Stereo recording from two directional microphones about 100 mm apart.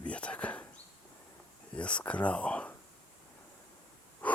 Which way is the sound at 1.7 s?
10° left (ahead or behind).